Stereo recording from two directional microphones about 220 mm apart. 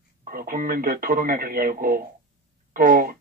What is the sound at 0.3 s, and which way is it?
Speech, 40° right (ahead or behind).